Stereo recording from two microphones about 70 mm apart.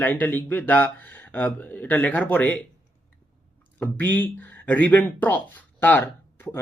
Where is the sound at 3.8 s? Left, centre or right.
Left.